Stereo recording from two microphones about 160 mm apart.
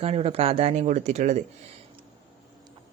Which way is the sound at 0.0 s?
40° right (ahead or behind).